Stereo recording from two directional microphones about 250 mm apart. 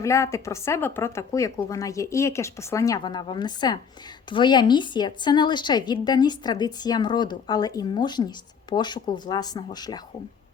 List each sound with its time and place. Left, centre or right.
0.0 s a woman's voice: centre